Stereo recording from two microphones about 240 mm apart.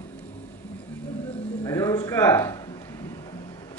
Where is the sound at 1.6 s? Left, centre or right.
Centre.